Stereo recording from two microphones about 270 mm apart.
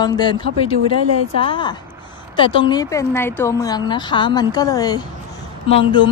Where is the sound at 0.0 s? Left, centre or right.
Centre.